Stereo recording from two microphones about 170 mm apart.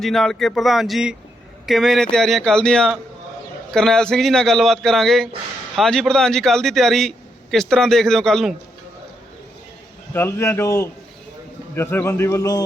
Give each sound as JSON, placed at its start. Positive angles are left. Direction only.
{"t": 0.0, "sound": "a man's voice", "side_deg": 0}
{"t": 10.1, "sound": "a man's voice", "side_deg": 15}